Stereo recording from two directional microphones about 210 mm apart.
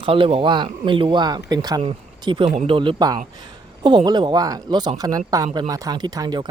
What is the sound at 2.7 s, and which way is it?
Speech, 20° right (ahead or behind).